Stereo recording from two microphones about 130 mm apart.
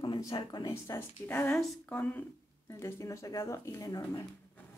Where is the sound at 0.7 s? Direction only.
20° left (ahead or behind).